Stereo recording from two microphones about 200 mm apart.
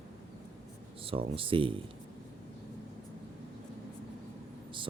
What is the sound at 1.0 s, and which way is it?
Speech, 25° right (ahead or behind).